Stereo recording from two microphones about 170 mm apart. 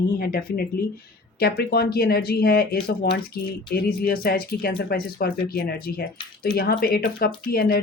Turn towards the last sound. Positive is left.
turn(degrees=65)  # may be behind; listen again after turning